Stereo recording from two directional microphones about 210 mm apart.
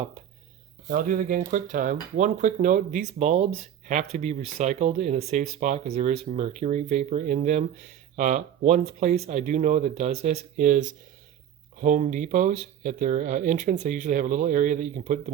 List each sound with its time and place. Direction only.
0.9 s speech: 40° right (ahead or behind)